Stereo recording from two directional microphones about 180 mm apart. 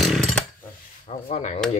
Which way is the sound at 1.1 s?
35° left (ahead or behind).